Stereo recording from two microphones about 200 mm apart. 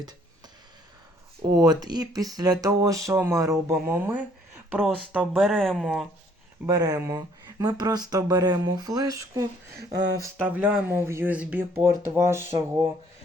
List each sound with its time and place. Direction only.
1.5 s speech: 20° right (ahead or behind); by 6.1 s centre (ahead or behind)
6.7 s speech: 20° right (ahead or behind)
9.7 s speech: 60° right (ahead or behind)
10.2 s speech: 10° right (ahead or behind)
12.5 s speech: 25° right (ahead or behind)